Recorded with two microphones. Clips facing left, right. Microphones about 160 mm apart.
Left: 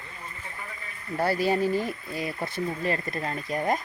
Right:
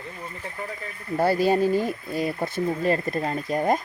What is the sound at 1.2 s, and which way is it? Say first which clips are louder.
Speech: right 4 dB; 25° right (ahead or behind).